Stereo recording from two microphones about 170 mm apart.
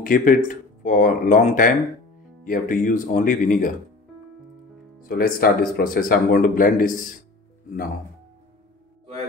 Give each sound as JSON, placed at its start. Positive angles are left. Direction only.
{"t": 0.0, "sound": "speech", "side_deg": 50}
{"t": 5.0, "sound": "speech", "side_deg": 60}